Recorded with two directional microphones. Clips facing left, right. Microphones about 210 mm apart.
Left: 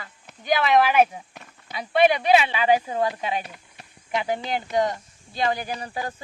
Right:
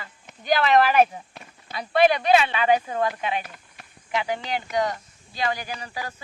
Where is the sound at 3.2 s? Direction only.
35° left (ahead or behind).